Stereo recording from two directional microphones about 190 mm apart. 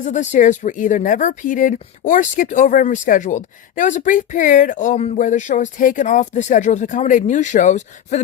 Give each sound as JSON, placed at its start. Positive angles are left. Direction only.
{"t": 0.0, "sound": "speech", "side_deg": 40}